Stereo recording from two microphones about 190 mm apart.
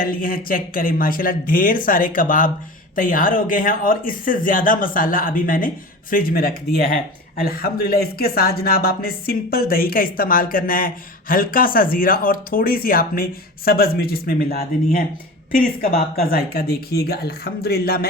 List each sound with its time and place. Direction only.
0.0 s speech: 50° left (ahead or behind)